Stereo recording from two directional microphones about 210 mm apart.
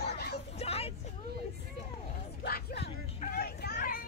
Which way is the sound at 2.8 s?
40° left (ahead or behind).